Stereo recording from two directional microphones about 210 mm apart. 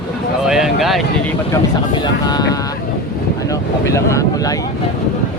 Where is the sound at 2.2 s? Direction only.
20° left (ahead or behind).